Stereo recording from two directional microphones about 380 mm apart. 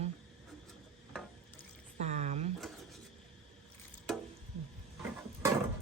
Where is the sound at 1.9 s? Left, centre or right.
Centre.